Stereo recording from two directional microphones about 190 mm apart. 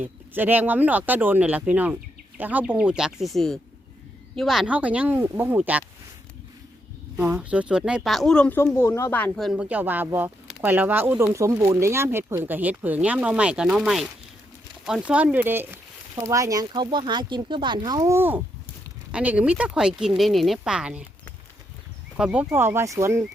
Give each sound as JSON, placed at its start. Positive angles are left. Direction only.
{"t": 0.0, "sound": "speech", "side_deg": -10}
{"t": 7.2, "sound": "speech", "side_deg": -10}
{"t": 22.2, "sound": "speech", "side_deg": -5}